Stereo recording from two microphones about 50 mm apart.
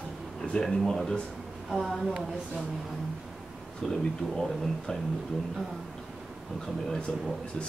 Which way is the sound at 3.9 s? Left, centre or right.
Centre.